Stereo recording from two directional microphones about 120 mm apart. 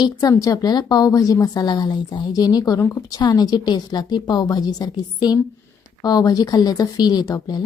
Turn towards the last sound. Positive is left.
turn(degrees=30)  # may be behind; listen again after turning